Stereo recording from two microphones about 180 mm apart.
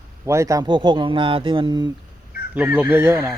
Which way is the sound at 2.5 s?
10° right (ahead or behind).